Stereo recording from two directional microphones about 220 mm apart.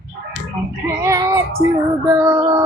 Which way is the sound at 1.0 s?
15° right (ahead or behind).